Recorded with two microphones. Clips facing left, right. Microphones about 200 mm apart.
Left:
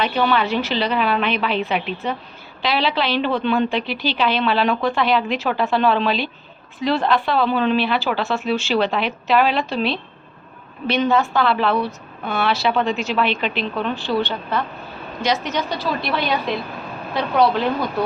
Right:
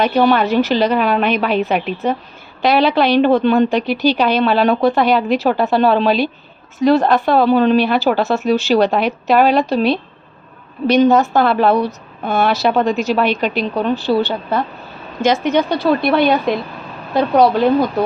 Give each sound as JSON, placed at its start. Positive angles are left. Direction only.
{"t": 0.0, "sound": "a woman's voice", "side_deg": -45}
{"t": 15.2, "sound": "a woman's voice", "side_deg": -50}
{"t": 17.2, "sound": "a woman's voice", "side_deg": -40}